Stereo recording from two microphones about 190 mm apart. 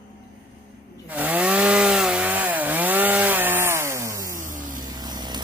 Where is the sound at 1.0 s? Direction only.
10° right (ahead or behind).